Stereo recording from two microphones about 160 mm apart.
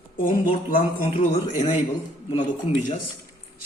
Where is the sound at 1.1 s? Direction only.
45° left (ahead or behind).